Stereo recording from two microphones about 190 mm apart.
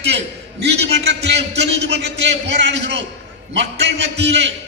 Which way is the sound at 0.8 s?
60° right (ahead or behind).